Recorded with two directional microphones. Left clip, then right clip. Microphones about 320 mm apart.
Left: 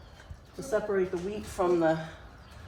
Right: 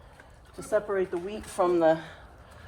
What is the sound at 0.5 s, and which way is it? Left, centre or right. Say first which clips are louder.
Speech: right 1 dB; right.